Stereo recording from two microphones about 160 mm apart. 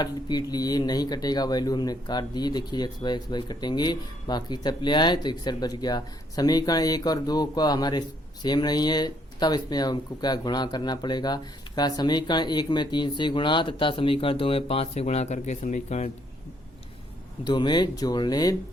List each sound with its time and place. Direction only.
0.0 s speech: 25° left (ahead or behind); by 16.0 s 45° left (ahead or behind)
17.4 s speech: 30° left (ahead or behind)